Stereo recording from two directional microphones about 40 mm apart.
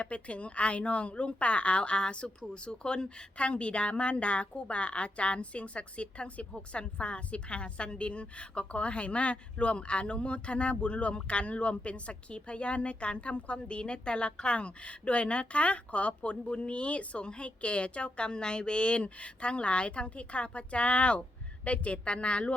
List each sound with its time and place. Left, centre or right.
0.0 s a woman's voice: left